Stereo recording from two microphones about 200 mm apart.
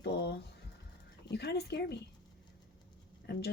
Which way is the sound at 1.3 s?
55° left (ahead or behind).